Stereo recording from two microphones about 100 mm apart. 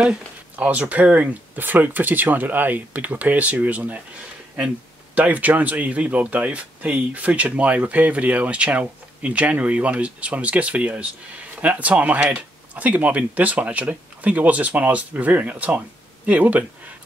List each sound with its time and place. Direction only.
0.0 s speech: 15° right (ahead or behind)
5.1 s speech: 15° right (ahead or behind)